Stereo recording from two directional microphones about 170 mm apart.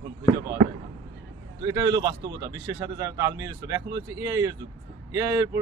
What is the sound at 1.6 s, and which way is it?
Speech, 20° right (ahead or behind).